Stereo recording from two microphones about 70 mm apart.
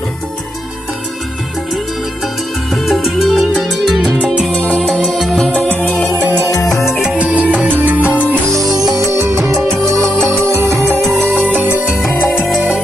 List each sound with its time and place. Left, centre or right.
2.7 s music: centre
4.5 s music: centre
7.0 s music: centre; by 8.0 s right
8.0 s music: left
8.6 s music: right
10.5 s music: right
11.3 s music: centre